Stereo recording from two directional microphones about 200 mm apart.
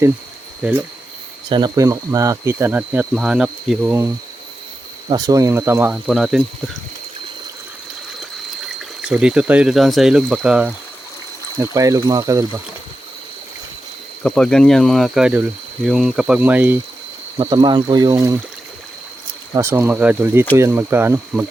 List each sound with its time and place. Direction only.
0.6 s speech: 5° right (ahead or behind)
1.5 s speech: 20° right (ahead or behind); by 3.9 s centre (ahead or behind)
5.0 s speech: 20° right (ahead or behind); by 6.4 s centre (ahead or behind)
9.0 s speech: 5° right (ahead or behind)
11.5 s speech: 15° right (ahead or behind)
14.3 s speech: 5° left (ahead or behind)
17.3 s speech: 25° right (ahead or behind)
19.5 s speech: 10° right (ahead or behind)